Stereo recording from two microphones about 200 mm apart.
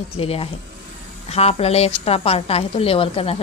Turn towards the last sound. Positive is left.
turn(degrees=30)  # may be behind; listen again after turning